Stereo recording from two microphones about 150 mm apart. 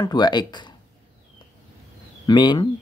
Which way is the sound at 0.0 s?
30° left (ahead or behind).